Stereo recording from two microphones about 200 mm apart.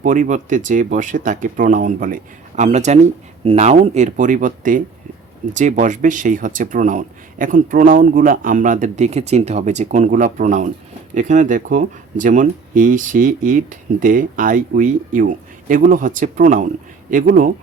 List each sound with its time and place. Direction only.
0.0 s speech: 40° right (ahead or behind)